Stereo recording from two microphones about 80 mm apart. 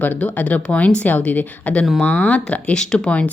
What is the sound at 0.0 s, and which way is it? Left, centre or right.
Speech, centre.